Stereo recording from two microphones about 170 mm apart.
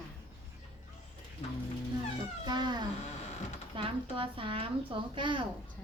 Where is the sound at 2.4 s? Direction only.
25° right (ahead or behind).